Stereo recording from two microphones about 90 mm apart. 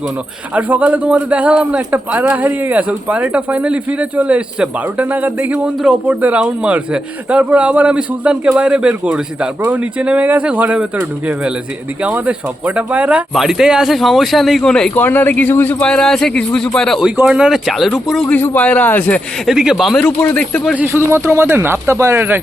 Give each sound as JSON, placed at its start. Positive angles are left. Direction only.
{"t": 0.5, "sound": "a man's voice", "side_deg": -15}
{"t": 12.0, "sound": "a man's voice", "side_deg": -15}
{"t": 13.3, "sound": "speech", "side_deg": -5}
{"t": 14.9, "sound": "a man's voice", "side_deg": 20}
{"t": 15.8, "sound": "speech", "side_deg": 10}
{"t": 17.2, "sound": "speech", "side_deg": -10}
{"t": 18.3, "sound": "a man's voice", "side_deg": 20}
{"t": 19.5, "sound": "speech", "side_deg": -5}
{"t": 20.2, "sound": "speech", "side_deg": 15}
{"t": 20.8, "sound": "speech", "side_deg": -30}